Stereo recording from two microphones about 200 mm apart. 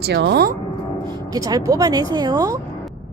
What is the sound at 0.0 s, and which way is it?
Speech, 55° right (ahead or behind).